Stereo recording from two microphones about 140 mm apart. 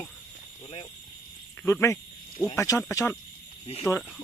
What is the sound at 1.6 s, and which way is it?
Speech, 20° left (ahead or behind).